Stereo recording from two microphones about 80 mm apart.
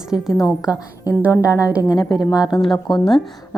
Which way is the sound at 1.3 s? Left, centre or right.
Left.